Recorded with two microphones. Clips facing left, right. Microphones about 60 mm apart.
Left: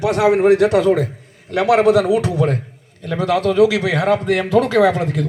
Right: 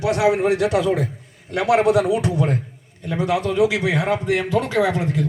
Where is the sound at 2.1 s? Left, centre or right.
Left.